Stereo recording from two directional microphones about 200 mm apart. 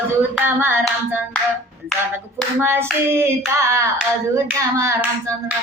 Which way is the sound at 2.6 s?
10° right (ahead or behind).